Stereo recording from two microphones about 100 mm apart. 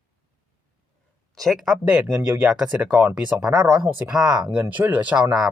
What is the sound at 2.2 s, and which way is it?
Speech, 25° right (ahead or behind).